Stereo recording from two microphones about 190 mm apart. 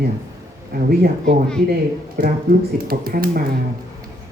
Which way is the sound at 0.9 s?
55° right (ahead or behind).